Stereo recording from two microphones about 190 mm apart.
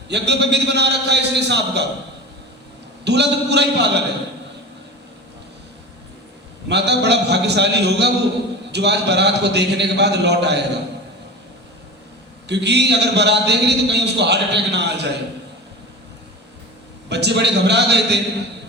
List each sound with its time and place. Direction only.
0.1 s a man's voice: 65° right (ahead or behind)
3.0 s a man's voice: 65° right (ahead or behind)
6.7 s a man's voice: 65° right (ahead or behind)
12.5 s a man's voice: 65° right (ahead or behind)
17.1 s a man's voice: 65° right (ahead or behind)